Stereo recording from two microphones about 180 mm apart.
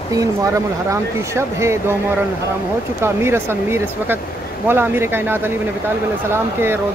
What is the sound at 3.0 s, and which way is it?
Speech, 15° right (ahead or behind).